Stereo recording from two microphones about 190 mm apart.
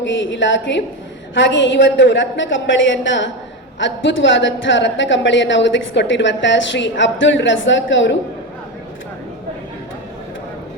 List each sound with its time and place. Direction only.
0.0 s speech: 75° left (ahead or behind)